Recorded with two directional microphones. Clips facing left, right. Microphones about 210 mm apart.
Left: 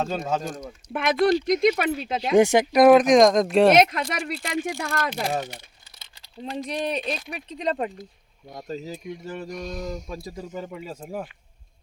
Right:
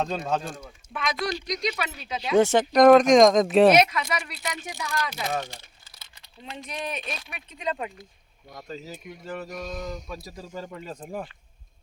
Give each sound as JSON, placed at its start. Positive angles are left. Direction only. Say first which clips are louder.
{"t": 0.0, "sound": "speech", "louder": "left 1 dB", "side_deg": 5}
{"t": 1.0, "sound": "speech", "louder": "left 9 dB", "side_deg": 55}
{"t": 2.3, "sound": "speech", "louder": "left 2 dB", "side_deg": 15}
{"t": 3.8, "sound": "speech", "louder": "left 2 dB", "side_deg": 55}
{"t": 6.0, "sound": "speech", "louder": "left 10 dB", "side_deg": 35}
{"t": 9.6, "sound": "speech", "louder": "left 2 dB", "side_deg": 0}
{"t": 10.3, "sound": "speech", "louder": "left 3 dB", "side_deg": 20}
{"t": 10.7, "sound": "speech", "louder": "left 2 dB", "side_deg": 10}